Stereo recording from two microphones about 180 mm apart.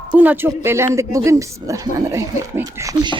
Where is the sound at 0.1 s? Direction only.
10° right (ahead or behind).